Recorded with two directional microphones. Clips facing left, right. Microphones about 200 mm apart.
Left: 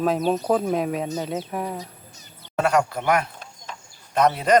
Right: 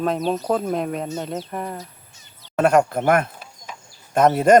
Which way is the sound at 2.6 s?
50° right (ahead or behind).